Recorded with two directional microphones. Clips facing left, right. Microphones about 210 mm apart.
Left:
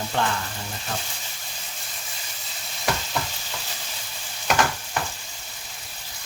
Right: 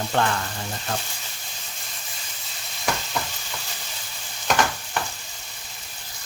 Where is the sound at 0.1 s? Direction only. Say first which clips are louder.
Right 2 dB; 55° right (ahead or behind).